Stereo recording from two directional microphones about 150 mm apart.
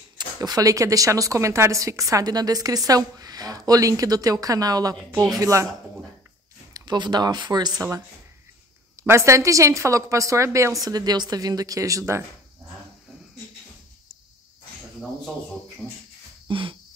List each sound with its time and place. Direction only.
0.4 s a woman's voice: 25° right (ahead or behind)
6.7 s a woman's voice: 30° right (ahead or behind)
9.0 s a woman's voice: 20° right (ahead or behind)
16.4 s a sound: 35° right (ahead or behind)